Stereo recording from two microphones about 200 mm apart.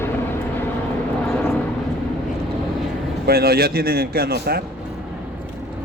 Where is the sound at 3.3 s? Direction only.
50° right (ahead or behind).